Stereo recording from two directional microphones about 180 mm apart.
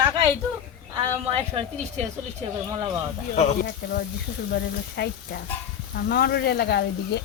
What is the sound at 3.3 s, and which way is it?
Speech, 40° left (ahead or behind).